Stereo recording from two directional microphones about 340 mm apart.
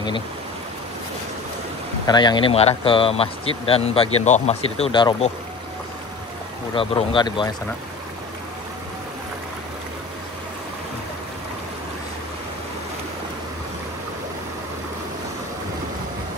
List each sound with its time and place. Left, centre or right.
2.0 s speech: centre
6.7 s speech: centre